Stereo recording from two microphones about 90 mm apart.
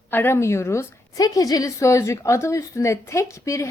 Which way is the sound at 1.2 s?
45° left (ahead or behind).